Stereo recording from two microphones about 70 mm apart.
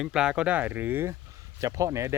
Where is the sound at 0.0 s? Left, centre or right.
Centre; by 1.1 s right.